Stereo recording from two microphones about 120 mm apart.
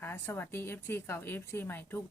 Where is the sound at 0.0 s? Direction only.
15° left (ahead or behind).